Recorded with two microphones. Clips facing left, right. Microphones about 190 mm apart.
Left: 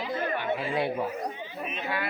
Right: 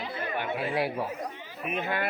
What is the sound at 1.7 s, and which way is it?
Speech, 50° right (ahead or behind).